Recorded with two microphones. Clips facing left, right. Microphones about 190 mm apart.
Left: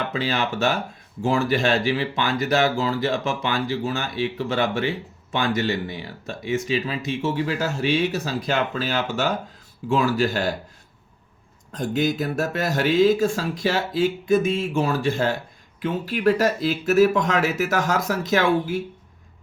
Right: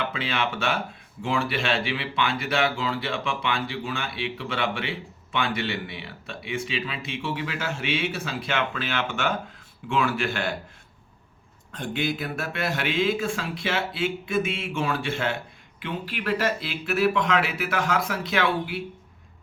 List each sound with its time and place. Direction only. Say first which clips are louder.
0.0 s speech: left 3 dB; 40° left (ahead or behind)
11.7 s speech: left 5 dB; 40° left (ahead or behind)